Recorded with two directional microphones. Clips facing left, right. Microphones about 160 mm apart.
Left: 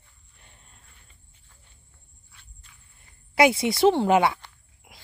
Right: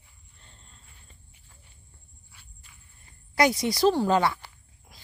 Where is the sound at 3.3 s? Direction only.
25° left (ahead or behind).